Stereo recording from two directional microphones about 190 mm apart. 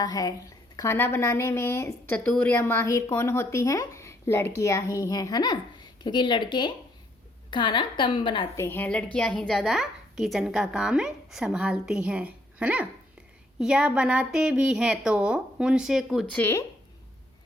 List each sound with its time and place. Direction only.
0.0 s a woman's voice: 20° left (ahead or behind)
8.5 s a woman's voice: 10° left (ahead or behind)
16.3 s a woman's voice: 15° left (ahead or behind)